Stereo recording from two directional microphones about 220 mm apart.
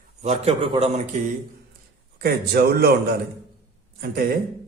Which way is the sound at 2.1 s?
45° right (ahead or behind).